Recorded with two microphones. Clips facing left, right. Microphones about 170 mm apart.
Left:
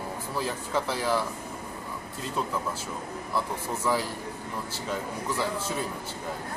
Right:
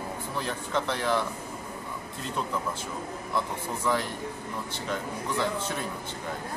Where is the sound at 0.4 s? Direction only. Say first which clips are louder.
Left 1 dB; 5° left (ahead or behind).